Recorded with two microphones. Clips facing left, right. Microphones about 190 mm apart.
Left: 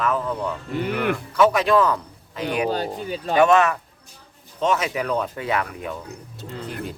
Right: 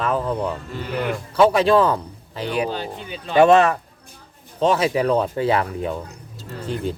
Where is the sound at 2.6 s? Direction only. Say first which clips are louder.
Left 3 dB; 40° left (ahead or behind).